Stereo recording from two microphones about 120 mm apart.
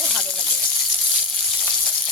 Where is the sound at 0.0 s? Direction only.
5° left (ahead or behind).